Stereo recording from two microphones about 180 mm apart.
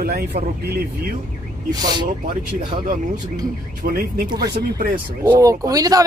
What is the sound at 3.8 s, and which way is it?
Speech, 50° right (ahead or behind).